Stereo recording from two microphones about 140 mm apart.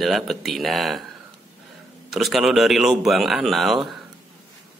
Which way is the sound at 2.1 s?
Centre (ahead or behind).